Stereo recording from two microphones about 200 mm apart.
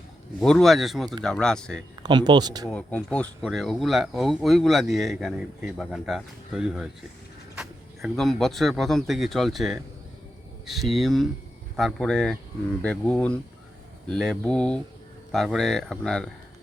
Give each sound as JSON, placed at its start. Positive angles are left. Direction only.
{"t": 0.4, "sound": "speech", "side_deg": 0}
{"t": 2.0, "sound": "speech", "side_deg": -20}
{"t": 2.6, "sound": "speech", "side_deg": 5}